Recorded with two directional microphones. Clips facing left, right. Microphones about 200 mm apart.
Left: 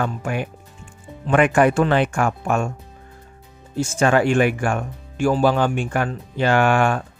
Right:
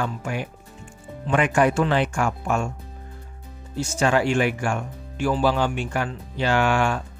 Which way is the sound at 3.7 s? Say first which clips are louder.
Left 4 dB; 55° left (ahead or behind).